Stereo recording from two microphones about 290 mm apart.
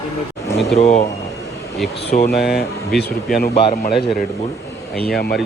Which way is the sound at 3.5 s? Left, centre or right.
Left.